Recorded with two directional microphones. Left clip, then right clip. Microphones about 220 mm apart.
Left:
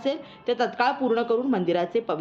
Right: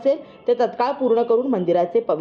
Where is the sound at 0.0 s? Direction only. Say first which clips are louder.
Right 8 dB; centre (ahead or behind).